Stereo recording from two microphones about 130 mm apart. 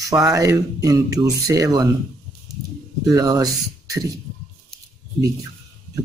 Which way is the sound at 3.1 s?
25° right (ahead or behind).